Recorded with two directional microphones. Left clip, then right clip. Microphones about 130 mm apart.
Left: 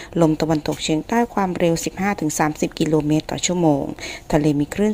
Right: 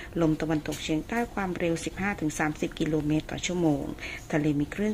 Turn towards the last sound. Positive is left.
turn(degrees=35)  # may be behind; listen again after turning